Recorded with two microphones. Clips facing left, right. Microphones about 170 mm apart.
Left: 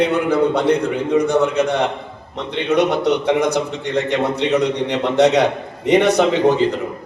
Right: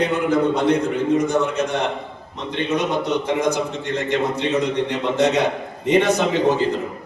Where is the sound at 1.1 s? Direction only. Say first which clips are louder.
Left 7 dB; 65° left (ahead or behind).